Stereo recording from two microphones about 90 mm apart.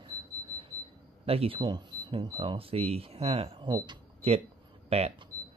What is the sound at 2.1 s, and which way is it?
Speech, 85° right.